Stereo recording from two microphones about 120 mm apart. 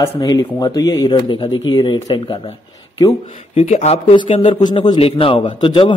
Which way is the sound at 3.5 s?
60° left (ahead or behind).